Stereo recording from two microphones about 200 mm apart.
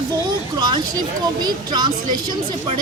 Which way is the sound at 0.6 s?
20° right (ahead or behind).